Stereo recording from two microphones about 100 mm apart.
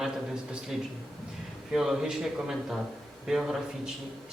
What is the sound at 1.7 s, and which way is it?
A man's voice, 5° right (ahead or behind).